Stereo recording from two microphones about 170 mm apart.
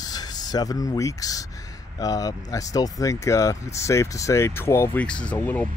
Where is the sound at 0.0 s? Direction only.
25° left (ahead or behind).